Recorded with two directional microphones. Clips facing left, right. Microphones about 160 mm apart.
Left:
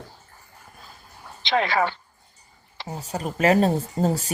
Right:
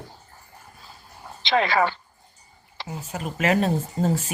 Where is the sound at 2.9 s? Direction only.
35° left (ahead or behind).